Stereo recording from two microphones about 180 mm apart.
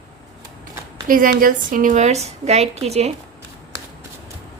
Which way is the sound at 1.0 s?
50° right (ahead or behind).